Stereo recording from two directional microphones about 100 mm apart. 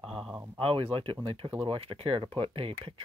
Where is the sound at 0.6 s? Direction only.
65° right (ahead or behind).